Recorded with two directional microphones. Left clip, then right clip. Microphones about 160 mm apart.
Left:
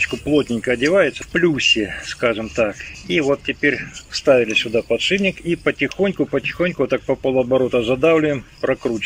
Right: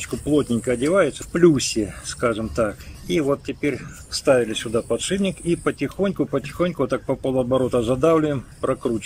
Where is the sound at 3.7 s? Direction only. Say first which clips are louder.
Left 6 dB; 5° right (ahead or behind); by 7.8 s 15° left (ahead or behind).